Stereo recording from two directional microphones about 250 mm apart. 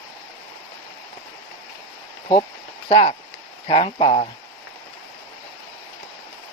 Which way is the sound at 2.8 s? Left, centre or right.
Left.